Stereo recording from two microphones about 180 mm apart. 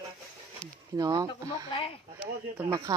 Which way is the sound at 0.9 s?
20° right (ahead or behind).